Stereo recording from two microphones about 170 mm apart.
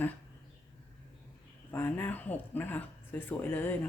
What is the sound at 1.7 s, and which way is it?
Speech, 10° left (ahead or behind).